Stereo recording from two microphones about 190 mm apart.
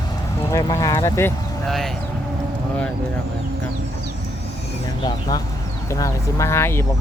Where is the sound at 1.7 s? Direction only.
Centre (ahead or behind).